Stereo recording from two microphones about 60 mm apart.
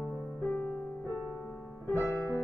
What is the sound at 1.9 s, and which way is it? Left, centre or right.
Music, left.